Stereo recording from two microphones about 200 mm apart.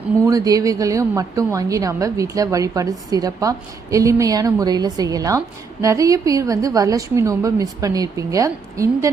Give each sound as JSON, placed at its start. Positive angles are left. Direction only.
{"t": 0.3, "sound": "a woman's voice", "side_deg": -15}